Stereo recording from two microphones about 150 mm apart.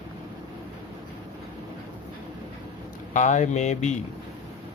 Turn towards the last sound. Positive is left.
turn(degrees=50)  # may be behind; listen again after turning